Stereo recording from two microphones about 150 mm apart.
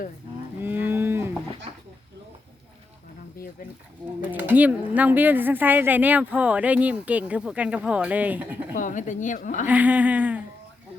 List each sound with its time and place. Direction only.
0.6 s cattle: 15° right (ahead or behind)
4.3 s speech: 10° right (ahead or behind)
8.7 s a woman's voice: 60° left (ahead or behind)
9.6 s speech: 10° right (ahead or behind)